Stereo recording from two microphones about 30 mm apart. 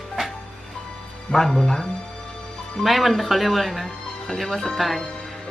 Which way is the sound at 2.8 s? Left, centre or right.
Centre.